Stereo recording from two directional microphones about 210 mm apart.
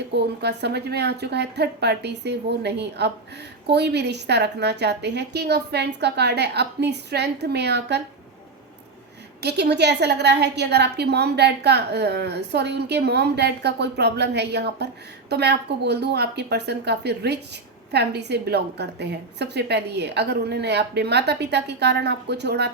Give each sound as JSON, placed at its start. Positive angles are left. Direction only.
{"t": 0.1, "sound": "a woman's voice", "side_deg": -55}
{"t": 9.4, "sound": "a woman's voice", "side_deg": -50}